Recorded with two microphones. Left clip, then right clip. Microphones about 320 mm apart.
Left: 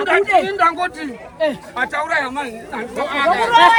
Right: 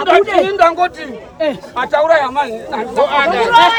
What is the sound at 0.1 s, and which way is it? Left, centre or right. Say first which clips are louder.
Speech: right 4 dB; right.